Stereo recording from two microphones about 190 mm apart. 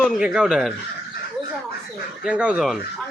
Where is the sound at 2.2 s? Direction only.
5° right (ahead or behind).